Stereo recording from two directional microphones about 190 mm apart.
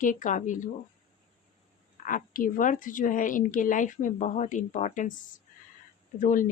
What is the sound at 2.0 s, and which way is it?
A woman's voice, 45° left (ahead or behind).